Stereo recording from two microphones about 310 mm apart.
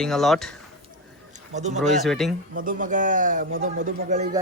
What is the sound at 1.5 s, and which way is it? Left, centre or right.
Speech, right.